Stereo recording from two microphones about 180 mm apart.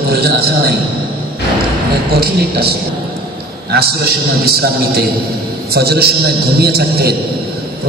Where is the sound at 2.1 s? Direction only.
60° right (ahead or behind).